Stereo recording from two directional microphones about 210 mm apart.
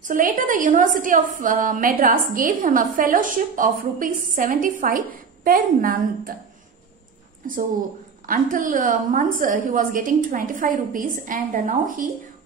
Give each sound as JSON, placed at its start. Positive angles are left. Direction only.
{"t": 0.0, "sound": "a woman's voice", "side_deg": -40}
{"t": 8.3, "sound": "a woman's voice", "side_deg": -40}